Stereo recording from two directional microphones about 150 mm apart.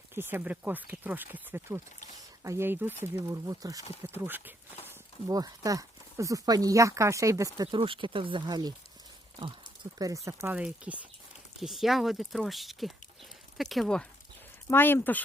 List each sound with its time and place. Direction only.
0.1 s speech: 15° right (ahead or behind)
4.9 s speech: 25° right (ahead or behind)
10.0 s speech: 20° right (ahead or behind)
10.4 s speech: 5° right (ahead or behind)
14.7 s speech: 15° left (ahead or behind)